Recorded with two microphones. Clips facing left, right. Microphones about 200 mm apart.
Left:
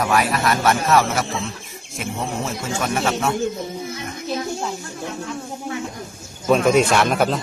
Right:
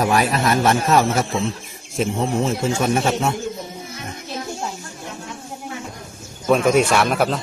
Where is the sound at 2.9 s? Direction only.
25° right (ahead or behind).